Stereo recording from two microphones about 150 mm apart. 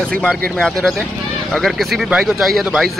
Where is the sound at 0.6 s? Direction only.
Centre (ahead or behind).